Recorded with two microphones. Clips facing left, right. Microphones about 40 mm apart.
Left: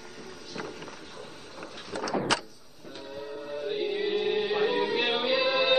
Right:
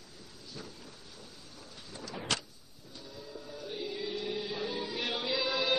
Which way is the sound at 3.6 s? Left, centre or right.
Left.